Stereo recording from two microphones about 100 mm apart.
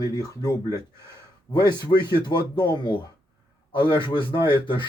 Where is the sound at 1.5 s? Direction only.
45° left (ahead or behind).